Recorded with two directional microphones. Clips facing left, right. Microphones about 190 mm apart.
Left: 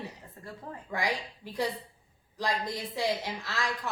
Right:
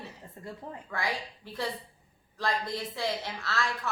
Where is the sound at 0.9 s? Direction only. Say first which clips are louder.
Left 2 dB; 15° left (ahead or behind).